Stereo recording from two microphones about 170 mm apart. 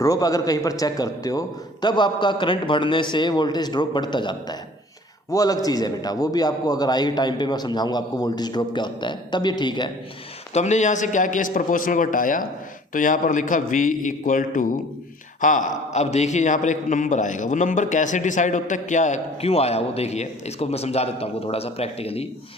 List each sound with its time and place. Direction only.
0.0 s a man's voice: 20° left (ahead or behind)
10.5 s a man's voice: 45° left (ahead or behind)